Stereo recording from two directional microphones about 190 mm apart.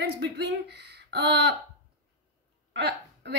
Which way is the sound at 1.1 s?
60° right (ahead or behind).